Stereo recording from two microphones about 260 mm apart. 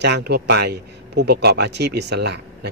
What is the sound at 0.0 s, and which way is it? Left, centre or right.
A man's voice, right.